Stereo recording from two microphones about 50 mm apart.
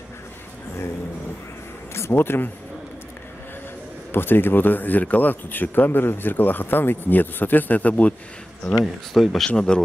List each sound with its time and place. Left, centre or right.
2.0 s speech: left
4.1 s speech: left
9.1 s speech: centre
9.7 s speech: centre